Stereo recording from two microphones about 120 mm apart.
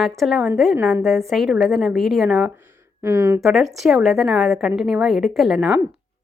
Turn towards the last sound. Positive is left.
turn(degrees=-5)  # may be behind; listen again after turning